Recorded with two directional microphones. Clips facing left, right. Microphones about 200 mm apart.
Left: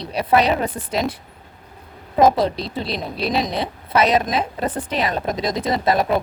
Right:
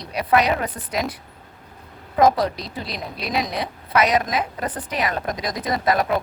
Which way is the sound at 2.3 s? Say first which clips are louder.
Left 3 dB; 25° left (ahead or behind).